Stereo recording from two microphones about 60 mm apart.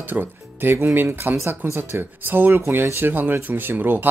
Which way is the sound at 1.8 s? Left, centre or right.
Right.